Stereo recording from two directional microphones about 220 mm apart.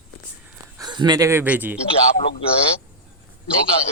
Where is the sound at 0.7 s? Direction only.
20° right (ahead or behind).